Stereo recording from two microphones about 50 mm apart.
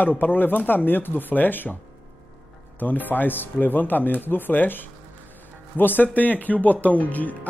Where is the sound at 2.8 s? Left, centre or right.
Left.